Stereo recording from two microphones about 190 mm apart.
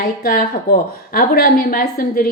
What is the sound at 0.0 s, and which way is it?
A woman's voice, 50° left (ahead or behind).